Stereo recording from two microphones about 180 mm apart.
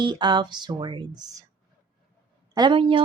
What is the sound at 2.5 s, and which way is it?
Speech, 25° right (ahead or behind).